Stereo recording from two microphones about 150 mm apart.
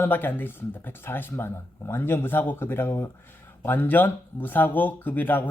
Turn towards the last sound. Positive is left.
turn(degrees=10)  # may be behind; listen again after turning